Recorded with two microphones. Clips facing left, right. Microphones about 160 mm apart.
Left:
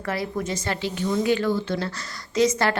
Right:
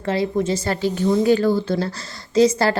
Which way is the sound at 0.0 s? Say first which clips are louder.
Right 7 dB; 25° right (ahead or behind).